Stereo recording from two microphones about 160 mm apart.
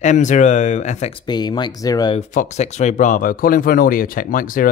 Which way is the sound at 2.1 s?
50° left (ahead or behind).